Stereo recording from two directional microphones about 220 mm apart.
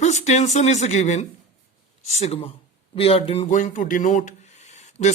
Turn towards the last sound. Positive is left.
turn(degrees=30)  # may be behind; listen again after turning